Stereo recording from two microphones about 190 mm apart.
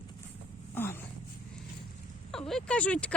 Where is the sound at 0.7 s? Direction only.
10° left (ahead or behind).